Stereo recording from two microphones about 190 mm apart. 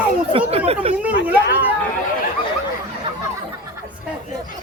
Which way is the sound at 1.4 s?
60° left (ahead or behind).